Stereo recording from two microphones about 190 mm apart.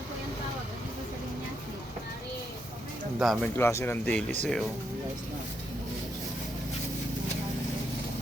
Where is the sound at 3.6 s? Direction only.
15° left (ahead or behind).